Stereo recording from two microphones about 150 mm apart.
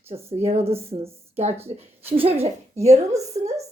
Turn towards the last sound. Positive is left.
turn(degrees=-45)  # may be behind; listen again after turning